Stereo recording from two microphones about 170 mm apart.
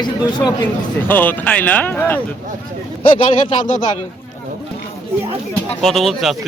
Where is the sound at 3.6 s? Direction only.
50° left (ahead or behind).